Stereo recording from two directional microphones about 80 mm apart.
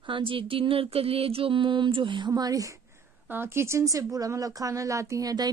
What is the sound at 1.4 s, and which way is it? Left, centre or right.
Mantra, right.